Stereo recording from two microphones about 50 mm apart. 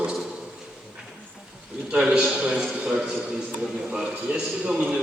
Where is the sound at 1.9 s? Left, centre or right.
Centre.